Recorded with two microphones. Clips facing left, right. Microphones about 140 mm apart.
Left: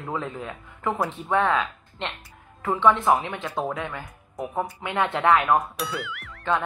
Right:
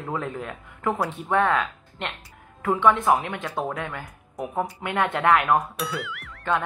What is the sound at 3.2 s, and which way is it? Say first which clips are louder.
Speech: even; 10° left (ahead or behind).